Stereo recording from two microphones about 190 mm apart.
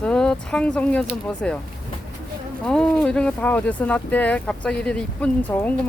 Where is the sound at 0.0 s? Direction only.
5° left (ahead or behind).